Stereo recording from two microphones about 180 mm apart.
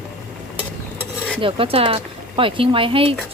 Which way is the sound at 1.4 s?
30° right (ahead or behind).